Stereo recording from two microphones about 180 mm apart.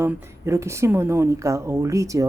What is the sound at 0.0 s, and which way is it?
A woman's voice, 15° right (ahead or behind).